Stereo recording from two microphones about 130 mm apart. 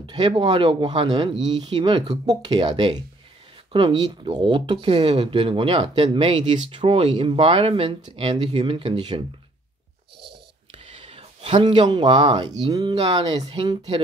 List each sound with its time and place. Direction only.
0.0 s speech: 40° right (ahead or behind)
10.7 s a sound: 50° right (ahead or behind)
11.6 s speech: 35° right (ahead or behind)